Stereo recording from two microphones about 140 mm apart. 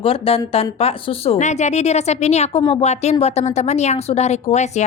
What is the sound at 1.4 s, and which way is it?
A woman's voice, 55° left (ahead or behind).